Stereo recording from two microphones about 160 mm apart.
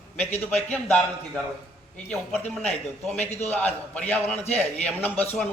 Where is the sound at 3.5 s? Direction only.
10° left (ahead or behind).